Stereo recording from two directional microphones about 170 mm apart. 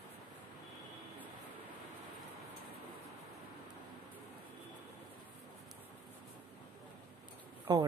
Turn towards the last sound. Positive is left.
turn(degrees=-25)  # may be behind; listen again after turning